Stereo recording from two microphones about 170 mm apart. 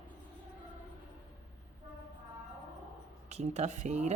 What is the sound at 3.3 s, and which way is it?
Speech, 40° right (ahead or behind).